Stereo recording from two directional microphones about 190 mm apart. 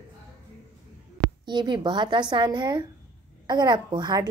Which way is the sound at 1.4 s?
25° right (ahead or behind).